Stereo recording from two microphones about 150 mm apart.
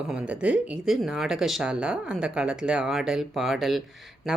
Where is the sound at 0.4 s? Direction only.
5° right (ahead or behind).